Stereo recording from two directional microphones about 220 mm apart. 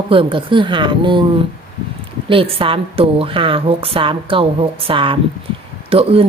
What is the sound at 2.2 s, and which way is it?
Speech, 25° right (ahead or behind).